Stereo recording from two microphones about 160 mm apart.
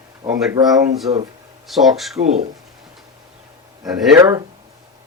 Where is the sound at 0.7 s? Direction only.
Centre (ahead or behind).